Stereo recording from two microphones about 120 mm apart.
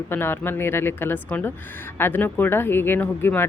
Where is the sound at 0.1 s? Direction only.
20° left (ahead or behind).